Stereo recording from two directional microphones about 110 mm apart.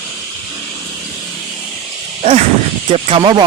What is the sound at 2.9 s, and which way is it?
Speech, 60° right (ahead or behind).